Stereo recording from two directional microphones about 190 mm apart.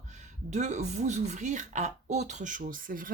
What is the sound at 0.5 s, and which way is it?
A woman's voice, 35° right (ahead or behind).